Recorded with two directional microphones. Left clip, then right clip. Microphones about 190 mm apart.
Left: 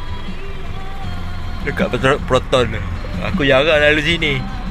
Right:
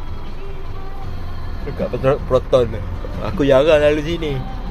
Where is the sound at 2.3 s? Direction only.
5° right (ahead or behind).